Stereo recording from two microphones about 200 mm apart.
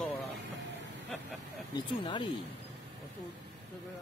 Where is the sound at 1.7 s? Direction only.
20° left (ahead or behind).